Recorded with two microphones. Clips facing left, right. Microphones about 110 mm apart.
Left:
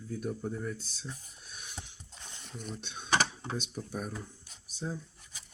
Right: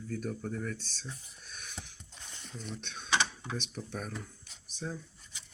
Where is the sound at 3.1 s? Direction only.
40° left (ahead or behind).